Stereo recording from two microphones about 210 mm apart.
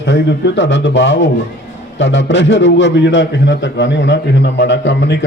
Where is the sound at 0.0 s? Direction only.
55° left (ahead or behind).